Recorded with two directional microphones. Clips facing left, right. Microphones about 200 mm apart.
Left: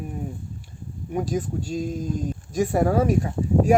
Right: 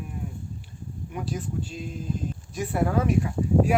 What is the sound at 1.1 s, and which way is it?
Speech, 45° left (ahead or behind).